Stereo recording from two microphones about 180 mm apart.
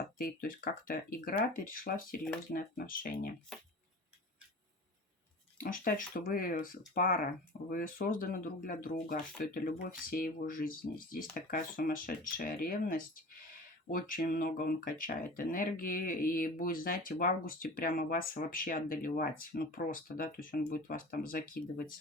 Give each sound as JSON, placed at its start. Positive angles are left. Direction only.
{"t": 0.2, "sound": "speech", "side_deg": 50}
{"t": 5.5, "sound": "speech", "side_deg": 50}